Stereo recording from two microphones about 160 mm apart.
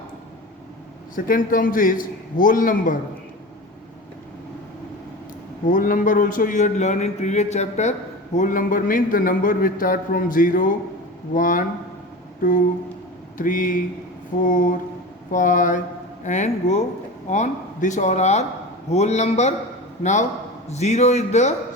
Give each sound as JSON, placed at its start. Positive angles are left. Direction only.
{"t": 1.1, "sound": "a man's voice", "side_deg": 60}
{"t": 5.6, "sound": "speech", "side_deg": 55}
{"t": 8.4, "sound": "a man's voice", "side_deg": 60}
{"t": 13.3, "sound": "a man's voice", "side_deg": 55}